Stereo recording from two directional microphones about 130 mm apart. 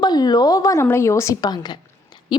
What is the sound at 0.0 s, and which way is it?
A woman's voice, 30° left (ahead or behind).